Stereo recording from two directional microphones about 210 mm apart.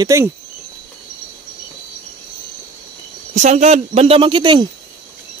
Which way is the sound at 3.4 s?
35° right (ahead or behind).